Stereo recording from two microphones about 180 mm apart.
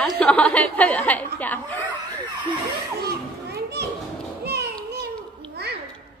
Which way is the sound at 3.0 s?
60° right (ahead or behind).